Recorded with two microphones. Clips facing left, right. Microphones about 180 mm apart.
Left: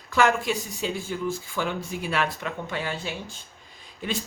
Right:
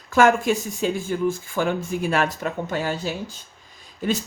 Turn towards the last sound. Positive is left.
turn(degrees=-40)  # may be behind; listen again after turning